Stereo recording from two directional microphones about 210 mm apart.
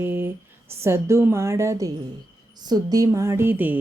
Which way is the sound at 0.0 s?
10° right (ahead or behind).